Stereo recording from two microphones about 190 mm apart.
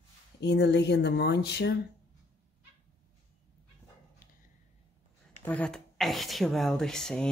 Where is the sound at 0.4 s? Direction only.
65° left (ahead or behind).